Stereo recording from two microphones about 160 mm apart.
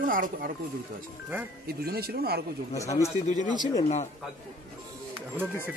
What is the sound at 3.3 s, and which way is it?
Speech, 50° left (ahead or behind).